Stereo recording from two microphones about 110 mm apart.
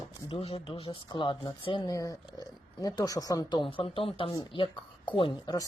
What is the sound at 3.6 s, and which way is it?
Speech, 55° left (ahead or behind).